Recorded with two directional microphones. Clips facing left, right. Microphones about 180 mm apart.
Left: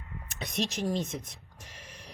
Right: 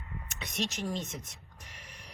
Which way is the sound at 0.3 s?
35° left (ahead or behind).